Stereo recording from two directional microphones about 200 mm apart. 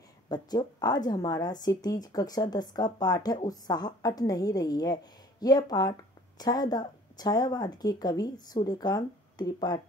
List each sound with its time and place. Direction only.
0.3 s a woman's voice: 20° left (ahead or behind)